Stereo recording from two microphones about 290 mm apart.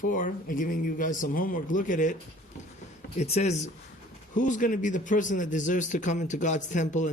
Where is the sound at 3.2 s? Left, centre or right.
Left.